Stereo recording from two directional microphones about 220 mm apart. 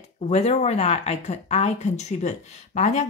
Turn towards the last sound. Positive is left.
turn(degrees=30)  # may be behind; listen again after turning